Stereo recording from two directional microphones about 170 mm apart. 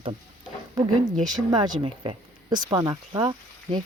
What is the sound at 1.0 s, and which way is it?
Speech, 45° right (ahead or behind).